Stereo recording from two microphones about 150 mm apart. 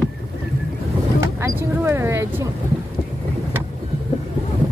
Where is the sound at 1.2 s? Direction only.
15° right (ahead or behind).